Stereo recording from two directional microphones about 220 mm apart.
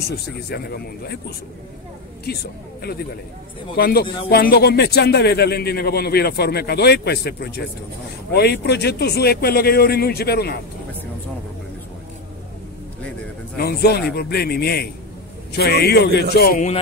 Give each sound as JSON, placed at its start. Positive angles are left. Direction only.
{"t": 0.0, "sound": "speech", "side_deg": 45}
{"t": 3.7, "sound": "speech", "side_deg": 45}
{"t": 13.6, "sound": "speech", "side_deg": 45}